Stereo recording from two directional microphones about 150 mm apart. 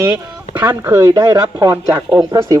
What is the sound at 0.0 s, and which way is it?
Speech, 20° right (ahead or behind).